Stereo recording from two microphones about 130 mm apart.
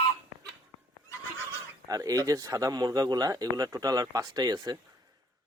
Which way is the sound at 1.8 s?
25° right (ahead or behind).